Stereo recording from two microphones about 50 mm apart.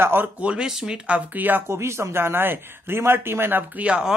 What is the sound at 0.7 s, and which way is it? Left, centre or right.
Speech, centre.